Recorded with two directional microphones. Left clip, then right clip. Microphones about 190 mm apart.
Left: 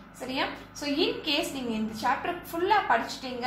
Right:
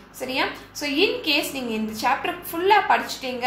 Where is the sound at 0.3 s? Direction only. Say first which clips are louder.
Right 6 dB; 15° right (ahead or behind).